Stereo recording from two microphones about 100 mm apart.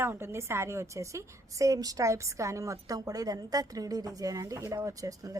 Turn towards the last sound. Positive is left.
turn(degrees=-35)  # may be behind; listen again after turning